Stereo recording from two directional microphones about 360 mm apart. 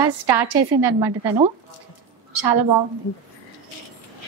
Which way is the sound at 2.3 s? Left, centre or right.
Right.